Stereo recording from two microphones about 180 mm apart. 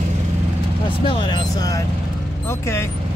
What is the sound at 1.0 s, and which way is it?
Speech, 25° left (ahead or behind).